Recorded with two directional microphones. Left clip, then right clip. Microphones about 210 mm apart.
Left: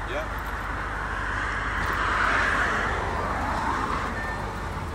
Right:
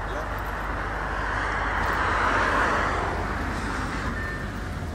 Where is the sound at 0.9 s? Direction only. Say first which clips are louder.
Right 1 dB; 35° right (ahead or behind).